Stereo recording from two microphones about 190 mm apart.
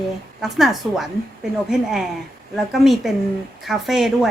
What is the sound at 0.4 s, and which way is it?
A woman's voice, centre (ahead or behind).